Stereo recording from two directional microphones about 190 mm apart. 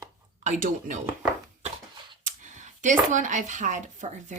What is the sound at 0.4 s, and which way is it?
Speech, 40° right (ahead or behind).